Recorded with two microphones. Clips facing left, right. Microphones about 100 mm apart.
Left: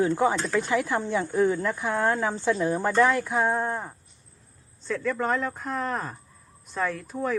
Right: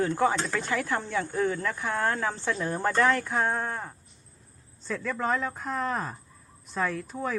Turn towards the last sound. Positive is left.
turn(degrees=0)  # may be behind; listen again after turning